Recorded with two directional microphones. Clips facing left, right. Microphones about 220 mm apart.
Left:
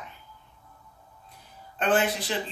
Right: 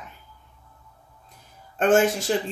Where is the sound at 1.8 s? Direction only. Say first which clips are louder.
Right 6 dB; 45° right (ahead or behind).